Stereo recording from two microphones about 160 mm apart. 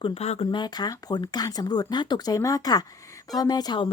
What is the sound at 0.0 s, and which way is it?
A woman's voice, 40° left (ahead or behind).